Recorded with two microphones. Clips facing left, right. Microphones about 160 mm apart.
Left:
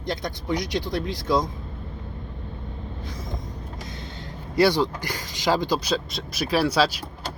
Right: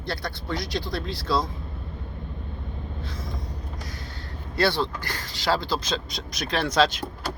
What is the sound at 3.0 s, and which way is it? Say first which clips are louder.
Vehicle: left 3 dB; 15° left (ahead or behind).